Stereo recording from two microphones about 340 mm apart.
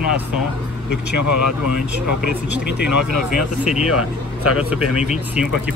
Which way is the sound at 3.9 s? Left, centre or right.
Left.